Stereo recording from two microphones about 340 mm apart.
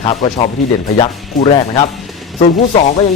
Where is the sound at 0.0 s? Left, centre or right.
Centre.